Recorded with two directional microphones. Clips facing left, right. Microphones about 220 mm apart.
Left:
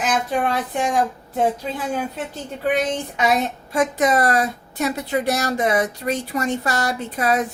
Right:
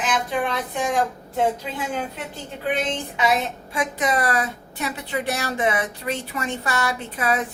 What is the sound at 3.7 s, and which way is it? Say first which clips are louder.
A woman's voice: left 5 dB; 45° left (ahead or behind).